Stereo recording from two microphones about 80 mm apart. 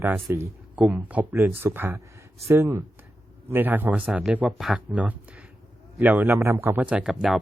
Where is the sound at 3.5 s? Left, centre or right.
Right.